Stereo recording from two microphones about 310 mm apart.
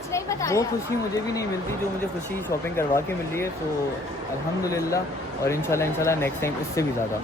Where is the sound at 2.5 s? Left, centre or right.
Centre.